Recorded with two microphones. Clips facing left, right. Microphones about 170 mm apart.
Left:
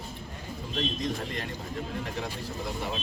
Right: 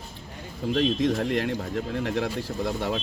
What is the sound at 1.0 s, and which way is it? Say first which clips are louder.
Speech: right 9 dB; 90° right.